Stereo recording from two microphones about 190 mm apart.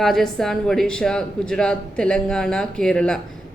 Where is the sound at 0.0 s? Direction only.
Centre (ahead or behind).